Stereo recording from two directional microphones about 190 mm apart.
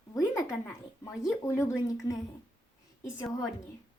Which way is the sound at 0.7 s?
15° left (ahead or behind).